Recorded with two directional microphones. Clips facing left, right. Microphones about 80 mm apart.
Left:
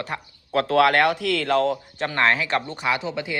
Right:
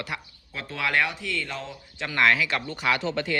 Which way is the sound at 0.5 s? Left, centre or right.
Left.